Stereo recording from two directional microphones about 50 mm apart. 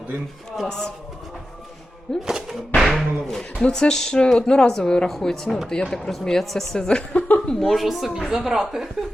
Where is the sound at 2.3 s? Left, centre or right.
Centre.